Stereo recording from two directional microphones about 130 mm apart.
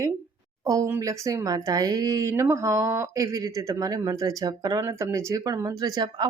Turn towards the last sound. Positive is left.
turn(degrees=-30)  # may be behind; listen again after turning